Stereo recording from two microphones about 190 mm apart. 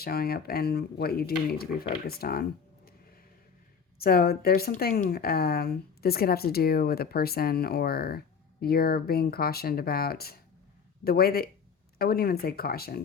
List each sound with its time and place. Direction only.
0.0 s a woman's voice: 55° left (ahead or behind)
3.9 s a woman's voice: 55° left (ahead or behind)